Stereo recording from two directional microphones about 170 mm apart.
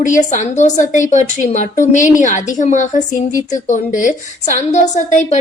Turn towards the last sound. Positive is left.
turn(degrees=45)  # may be behind; listen again after turning